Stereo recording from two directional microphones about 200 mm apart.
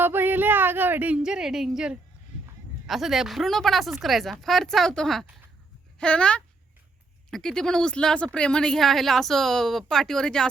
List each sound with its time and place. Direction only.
0.0 s speech: 10° right (ahead or behind)